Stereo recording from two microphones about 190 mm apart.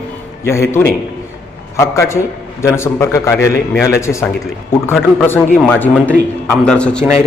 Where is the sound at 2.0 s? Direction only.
15° left (ahead or behind).